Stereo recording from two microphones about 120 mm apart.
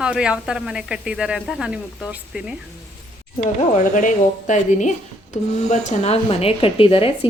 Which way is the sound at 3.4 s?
85° left.